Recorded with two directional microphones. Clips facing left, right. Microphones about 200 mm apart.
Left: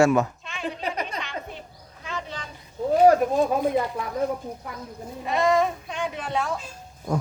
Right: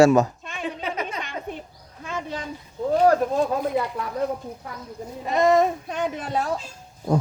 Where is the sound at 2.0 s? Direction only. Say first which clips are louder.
Right 3 dB; 50° right (ahead or behind).